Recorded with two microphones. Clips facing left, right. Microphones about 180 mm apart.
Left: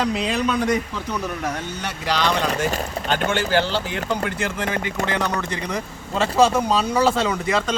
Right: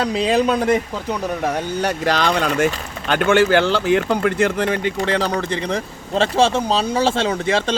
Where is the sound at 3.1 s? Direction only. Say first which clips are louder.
Right 7 dB; 60° right (ahead or behind).